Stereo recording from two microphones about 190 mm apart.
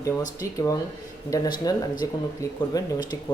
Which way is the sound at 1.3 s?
20° left (ahead or behind).